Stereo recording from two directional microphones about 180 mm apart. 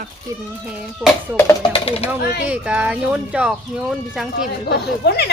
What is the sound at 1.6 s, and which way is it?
Speech, 30° left (ahead or behind).